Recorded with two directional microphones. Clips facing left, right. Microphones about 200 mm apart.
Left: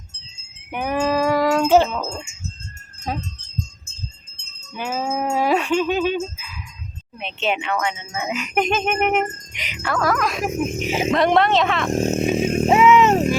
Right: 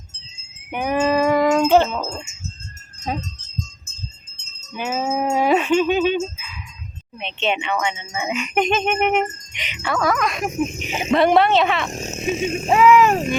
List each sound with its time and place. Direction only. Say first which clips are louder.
0.7 s a sound: right 2 dB; centre (ahead or behind)
4.7 s speech: right 2 dB; 5° right (ahead or behind)
5.3 s music: right 2 dB; centre (ahead or behind)
7.2 s speech: right 1 dB; 5° left (ahead or behind)
11.9 s speech: left 10 dB; 55° left (ahead or behind)
12.6 s speech: right 1 dB; 20° left (ahead or behind)